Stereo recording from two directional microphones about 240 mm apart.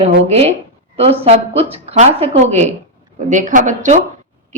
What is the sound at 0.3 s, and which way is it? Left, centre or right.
A woman's voice, right.